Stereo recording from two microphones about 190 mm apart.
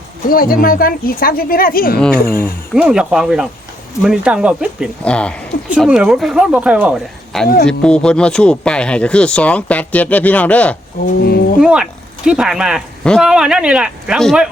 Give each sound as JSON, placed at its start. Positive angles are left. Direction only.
{"t": 0.3, "sound": "a woman's voice", "side_deg": 50}
{"t": 2.7, "sound": "speech", "side_deg": -5}
{"t": 11.0, "sound": "a woman's voice", "side_deg": 55}
{"t": 11.6, "sound": "speech", "side_deg": -5}